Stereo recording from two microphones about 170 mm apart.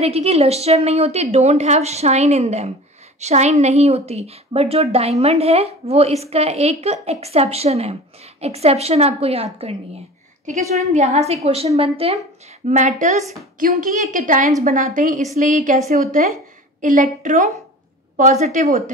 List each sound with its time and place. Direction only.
0.0 s a woman's voice: 35° right (ahead or behind)